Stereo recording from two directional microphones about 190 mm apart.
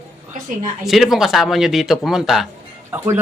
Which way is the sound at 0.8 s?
Centre (ahead or behind).